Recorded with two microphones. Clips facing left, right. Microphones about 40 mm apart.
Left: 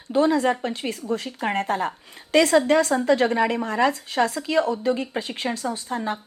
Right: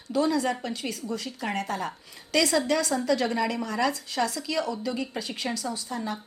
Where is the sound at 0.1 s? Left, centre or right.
Left.